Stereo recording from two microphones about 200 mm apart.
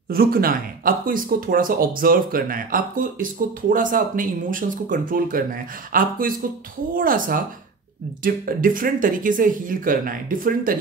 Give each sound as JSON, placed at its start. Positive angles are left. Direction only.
{"t": 0.1, "sound": "speech", "side_deg": -50}